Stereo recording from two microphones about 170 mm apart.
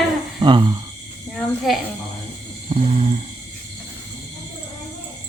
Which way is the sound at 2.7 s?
35° right (ahead or behind).